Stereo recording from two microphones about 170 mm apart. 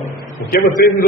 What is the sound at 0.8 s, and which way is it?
Speech, 60° left (ahead or behind).